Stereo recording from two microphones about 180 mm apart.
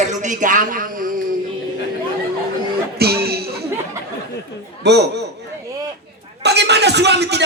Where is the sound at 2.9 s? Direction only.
60° right (ahead or behind).